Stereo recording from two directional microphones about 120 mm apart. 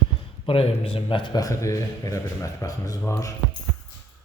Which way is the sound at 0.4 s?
50° left (ahead or behind).